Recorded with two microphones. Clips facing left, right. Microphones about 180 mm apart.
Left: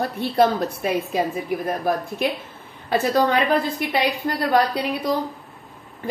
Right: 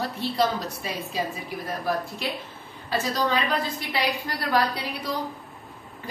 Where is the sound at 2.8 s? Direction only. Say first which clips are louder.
Left 6 dB; 55° left (ahead or behind).